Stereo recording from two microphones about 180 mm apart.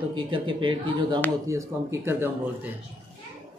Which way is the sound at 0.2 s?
25° right (ahead or behind).